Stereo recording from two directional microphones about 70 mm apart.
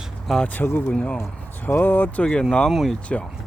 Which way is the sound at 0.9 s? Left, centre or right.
Centre.